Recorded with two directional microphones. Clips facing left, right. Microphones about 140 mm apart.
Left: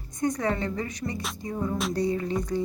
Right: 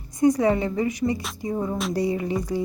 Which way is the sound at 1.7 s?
5° right (ahead or behind).